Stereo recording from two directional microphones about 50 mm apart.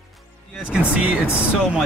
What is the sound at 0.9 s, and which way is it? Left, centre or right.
Speech, right.